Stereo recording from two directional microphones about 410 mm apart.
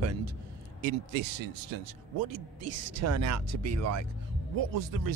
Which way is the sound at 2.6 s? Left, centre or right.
Right.